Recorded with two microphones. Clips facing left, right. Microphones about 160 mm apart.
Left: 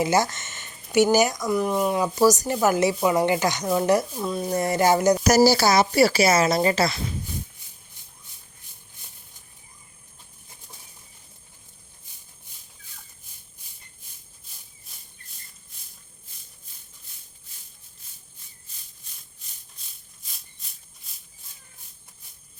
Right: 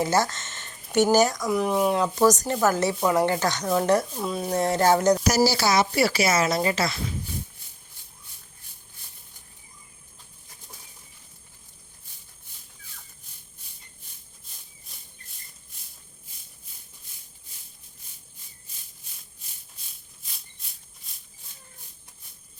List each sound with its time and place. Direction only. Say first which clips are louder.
0.0 s speech: left 1 dB; 15° left (ahead or behind)
1.5 s a woman's voice: even; centre (ahead or behind)
4.6 s a woman's voice: even; 10° left (ahead or behind)
5.3 s speech: left 4 dB; 45° left (ahead or behind)